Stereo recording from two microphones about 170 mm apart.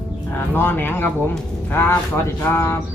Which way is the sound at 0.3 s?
10° left (ahead or behind).